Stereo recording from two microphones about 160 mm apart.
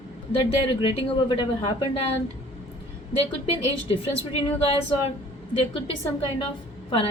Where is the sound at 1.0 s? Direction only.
35° left (ahead or behind).